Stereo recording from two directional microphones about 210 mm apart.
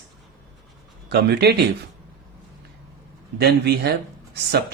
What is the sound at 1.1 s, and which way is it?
Speech, 50° right (ahead or behind).